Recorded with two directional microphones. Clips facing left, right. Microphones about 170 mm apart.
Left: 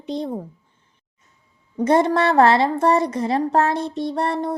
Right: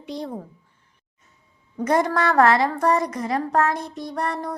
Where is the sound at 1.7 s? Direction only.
25° left (ahead or behind).